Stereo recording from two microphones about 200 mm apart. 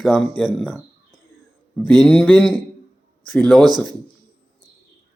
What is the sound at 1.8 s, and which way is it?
Speech, 20° right (ahead or behind).